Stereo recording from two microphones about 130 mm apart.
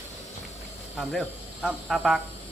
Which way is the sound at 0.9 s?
Centre (ahead or behind).